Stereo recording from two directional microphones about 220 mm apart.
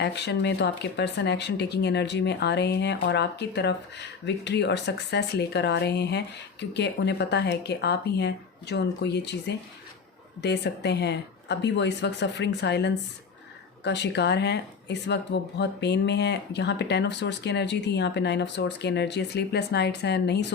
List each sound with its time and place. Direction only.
0.0 s speech: 50° left (ahead or behind)